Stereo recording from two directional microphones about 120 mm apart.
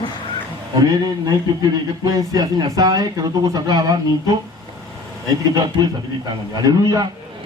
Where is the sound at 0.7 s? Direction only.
35° right (ahead or behind).